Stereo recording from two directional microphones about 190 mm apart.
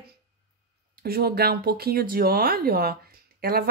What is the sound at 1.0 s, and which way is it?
Speech, 55° right (ahead or behind).